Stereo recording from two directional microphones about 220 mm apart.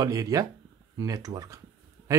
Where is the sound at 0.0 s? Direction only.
15° right (ahead or behind).